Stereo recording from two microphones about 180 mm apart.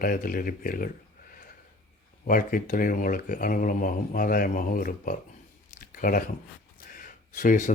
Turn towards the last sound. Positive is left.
turn(degrees=45)  # may be behind; listen again after turning